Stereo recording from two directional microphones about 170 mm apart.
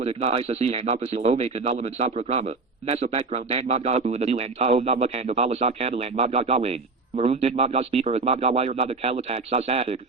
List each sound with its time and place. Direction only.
0.0 s speech: 40° right (ahead or behind)